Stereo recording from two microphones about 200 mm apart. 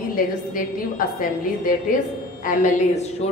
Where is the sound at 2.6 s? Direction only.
35° left (ahead or behind).